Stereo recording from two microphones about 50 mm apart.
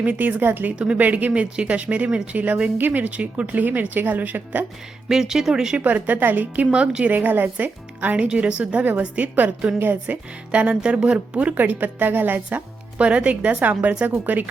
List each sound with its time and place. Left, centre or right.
0.0 s speech: right
3.2 s speech: right
5.0 s speech: centre
5.8 s speech: right
6.7 s speech: right
7.1 s speech: right
8.6 s speech: right
12.5 s speech: right